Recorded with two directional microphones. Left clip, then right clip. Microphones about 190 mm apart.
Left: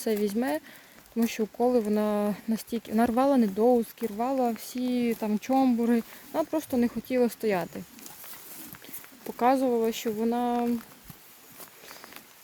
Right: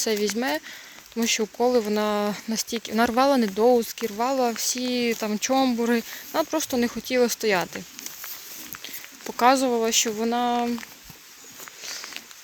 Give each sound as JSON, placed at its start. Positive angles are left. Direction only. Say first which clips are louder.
{"t": 0.0, "sound": "speech", "louder": "right 4 dB", "side_deg": 10}
{"t": 8.8, "sound": "speech", "louder": "right 7 dB", "side_deg": 5}